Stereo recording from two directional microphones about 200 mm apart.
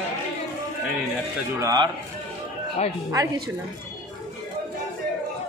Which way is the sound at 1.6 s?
20° right (ahead or behind).